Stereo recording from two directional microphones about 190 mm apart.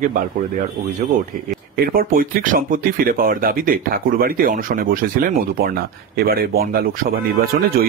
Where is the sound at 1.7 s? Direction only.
50° right (ahead or behind).